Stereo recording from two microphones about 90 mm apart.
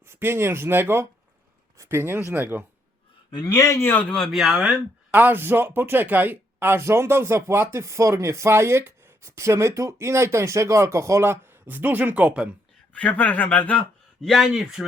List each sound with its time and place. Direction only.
0.0 s speech: 25° right (ahead or behind)
3.3 s a man's voice: 40° left (ahead or behind)
3.9 s speech: 10° left (ahead or behind)
5.1 s speech: 20° right (ahead or behind)
12.9 s speech: 15° left (ahead or behind)
14.2 s speech: centre (ahead or behind)